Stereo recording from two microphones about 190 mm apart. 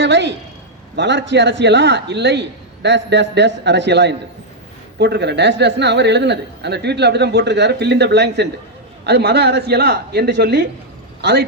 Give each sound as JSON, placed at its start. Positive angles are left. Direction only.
{"t": 0.0, "sound": "a woman's voice", "side_deg": -65}